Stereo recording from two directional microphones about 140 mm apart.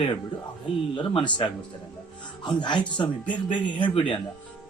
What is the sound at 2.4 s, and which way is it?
A man's voice, 35° left (ahead or behind).